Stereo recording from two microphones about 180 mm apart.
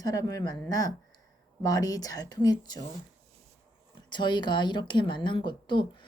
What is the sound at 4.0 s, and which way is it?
Speech, 25° left (ahead or behind).